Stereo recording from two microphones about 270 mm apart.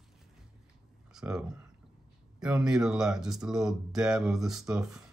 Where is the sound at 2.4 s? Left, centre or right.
Centre.